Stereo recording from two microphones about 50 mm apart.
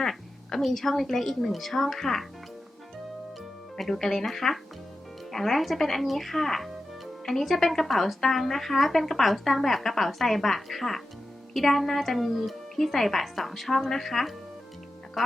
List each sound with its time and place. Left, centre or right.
0.0 s a woman's voice: centre
3.8 s a woman's voice: centre